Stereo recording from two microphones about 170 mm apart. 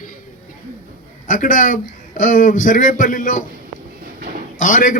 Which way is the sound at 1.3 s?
50° left (ahead or behind).